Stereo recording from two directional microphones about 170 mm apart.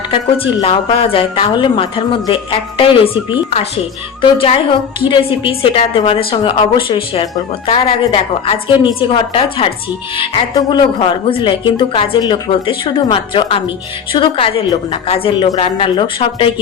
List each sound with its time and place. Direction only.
0.1 s a woman's voice: 35° left (ahead or behind)